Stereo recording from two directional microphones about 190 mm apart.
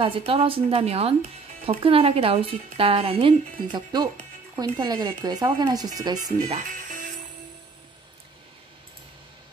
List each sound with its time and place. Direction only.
0.0 s speech: 30° right (ahead or behind)
6.4 s music: 40° right (ahead or behind)